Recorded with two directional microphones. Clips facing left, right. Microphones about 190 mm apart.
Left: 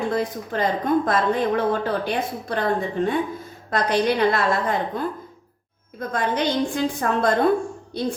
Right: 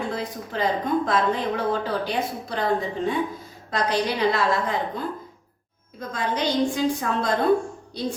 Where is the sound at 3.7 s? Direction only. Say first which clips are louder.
Left 4 dB; 55° left (ahead or behind).